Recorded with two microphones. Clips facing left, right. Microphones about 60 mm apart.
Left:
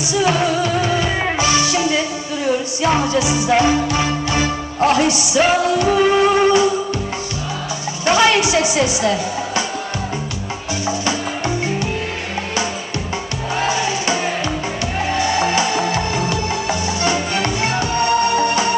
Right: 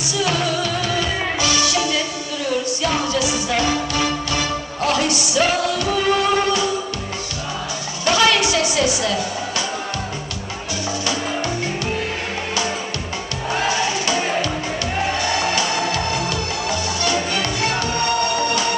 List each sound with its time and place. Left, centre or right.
0.1 s music: left
8.0 s a woman's voice: left
13.7 s music: left